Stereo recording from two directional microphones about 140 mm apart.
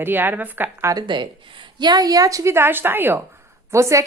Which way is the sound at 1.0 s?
35° right (ahead or behind).